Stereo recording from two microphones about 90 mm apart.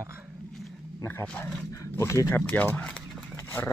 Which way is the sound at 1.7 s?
35° left (ahead or behind).